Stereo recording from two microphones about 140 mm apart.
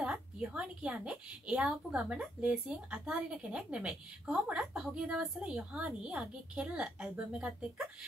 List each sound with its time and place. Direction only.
0.0 s a woman's voice: 10° right (ahead or behind)